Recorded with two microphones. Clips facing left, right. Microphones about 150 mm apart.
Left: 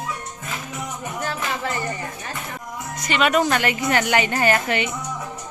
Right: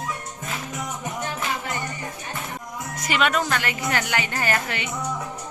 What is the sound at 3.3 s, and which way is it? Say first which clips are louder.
A woman's voice: left 5 dB; 20° left (ahead or behind).